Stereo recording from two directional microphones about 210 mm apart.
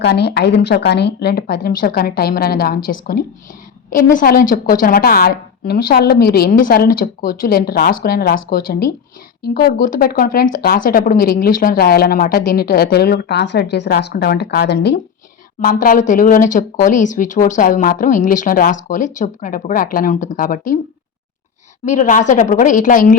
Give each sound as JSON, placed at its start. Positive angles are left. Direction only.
{"t": 0.0, "sound": "speech", "side_deg": 50}
{"t": 15.6, "sound": "speech", "side_deg": 40}
{"t": 21.8, "sound": "speech", "side_deg": 35}